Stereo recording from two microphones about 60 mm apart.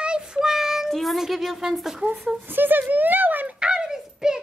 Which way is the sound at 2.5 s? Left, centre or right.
Right.